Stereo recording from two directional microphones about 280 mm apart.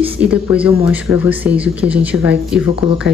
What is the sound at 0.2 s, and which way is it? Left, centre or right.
A man's voice, centre.